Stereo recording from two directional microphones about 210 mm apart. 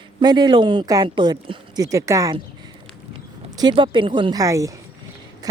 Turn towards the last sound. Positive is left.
turn(degrees=-15)  # may be behind; listen again after turning